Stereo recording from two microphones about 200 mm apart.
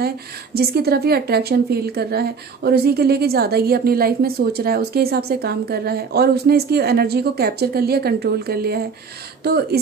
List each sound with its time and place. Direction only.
0.6 s a woman's voice: 50° right (ahead or behind)